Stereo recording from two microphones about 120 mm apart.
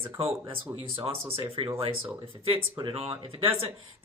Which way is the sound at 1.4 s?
45° right (ahead or behind).